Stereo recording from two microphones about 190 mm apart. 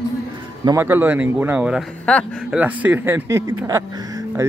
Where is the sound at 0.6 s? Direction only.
15° right (ahead or behind).